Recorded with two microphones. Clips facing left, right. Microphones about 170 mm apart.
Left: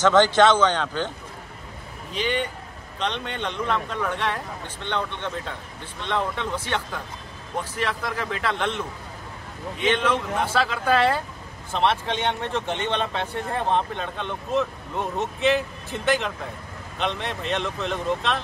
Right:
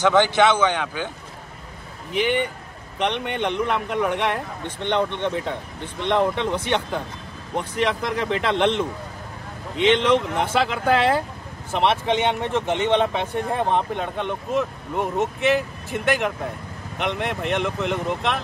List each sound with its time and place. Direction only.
0.0 s speech: 10° right (ahead or behind)
2.1 s speech: 15° right (ahead or behind)